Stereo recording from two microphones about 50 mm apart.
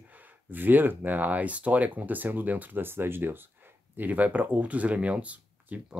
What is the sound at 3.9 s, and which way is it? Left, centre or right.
Speech, right.